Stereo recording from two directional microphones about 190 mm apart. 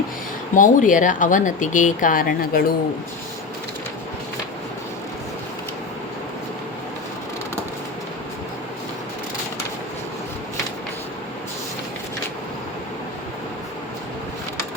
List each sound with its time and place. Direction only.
0.5 s speech: 45° left (ahead or behind)